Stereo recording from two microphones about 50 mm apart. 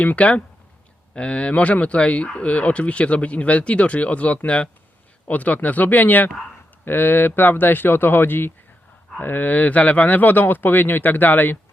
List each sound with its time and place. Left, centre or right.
0.0 s speech: left